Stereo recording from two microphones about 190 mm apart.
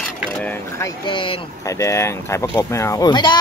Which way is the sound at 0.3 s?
10° left (ahead or behind).